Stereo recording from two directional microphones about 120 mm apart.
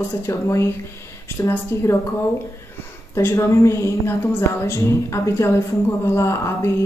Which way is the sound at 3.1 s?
25° left (ahead or behind).